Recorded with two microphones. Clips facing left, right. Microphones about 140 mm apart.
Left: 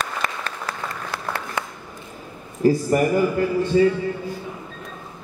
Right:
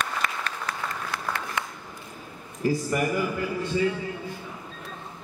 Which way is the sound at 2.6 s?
40° left (ahead or behind).